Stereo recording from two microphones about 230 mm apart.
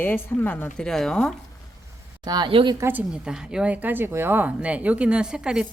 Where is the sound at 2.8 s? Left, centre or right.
Centre.